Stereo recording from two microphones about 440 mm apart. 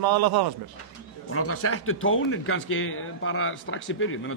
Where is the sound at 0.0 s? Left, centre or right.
Right.